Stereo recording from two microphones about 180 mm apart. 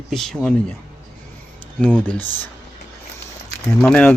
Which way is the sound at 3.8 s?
5° left (ahead or behind).